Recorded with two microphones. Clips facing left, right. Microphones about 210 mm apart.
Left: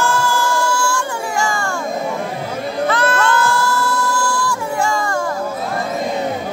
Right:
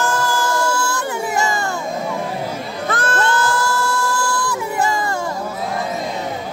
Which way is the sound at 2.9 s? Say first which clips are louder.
Left 2 dB; 45° right (ahead or behind).